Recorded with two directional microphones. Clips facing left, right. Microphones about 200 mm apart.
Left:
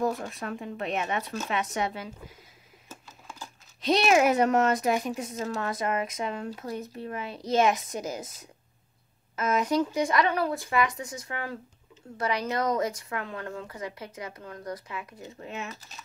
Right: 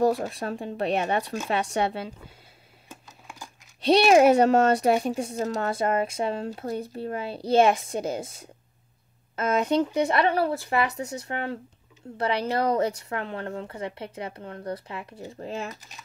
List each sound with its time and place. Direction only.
0.3 s a woman's voice: 35° right (ahead or behind)
3.8 s a woman's voice: 30° right (ahead or behind)